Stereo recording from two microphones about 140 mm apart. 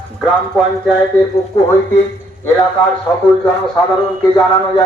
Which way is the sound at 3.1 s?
25° left (ahead or behind).